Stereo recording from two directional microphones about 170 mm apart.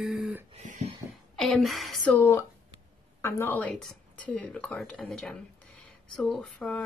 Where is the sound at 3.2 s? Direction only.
15° left (ahead or behind).